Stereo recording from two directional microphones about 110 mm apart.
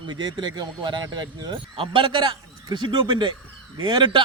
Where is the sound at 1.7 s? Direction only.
55° right (ahead or behind).